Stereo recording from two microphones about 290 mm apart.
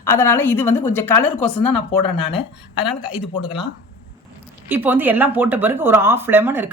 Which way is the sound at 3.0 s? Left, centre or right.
Centre.